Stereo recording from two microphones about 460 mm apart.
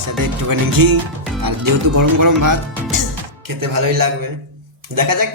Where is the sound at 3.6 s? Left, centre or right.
Right.